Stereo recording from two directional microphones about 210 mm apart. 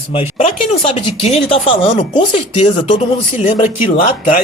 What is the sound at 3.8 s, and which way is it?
Speech, 40° left (ahead or behind).